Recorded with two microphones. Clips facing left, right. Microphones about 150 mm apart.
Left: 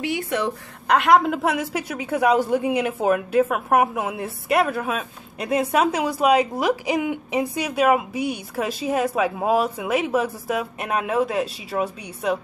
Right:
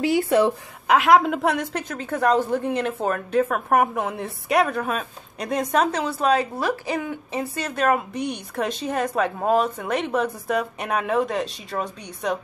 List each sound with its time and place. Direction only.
0.0 s a woman's voice: 35° right (ahead or behind)
0.8 s a woman's voice: centre (ahead or behind)